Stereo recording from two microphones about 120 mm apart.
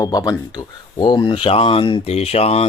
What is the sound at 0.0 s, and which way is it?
Speech, 30° left (ahead or behind).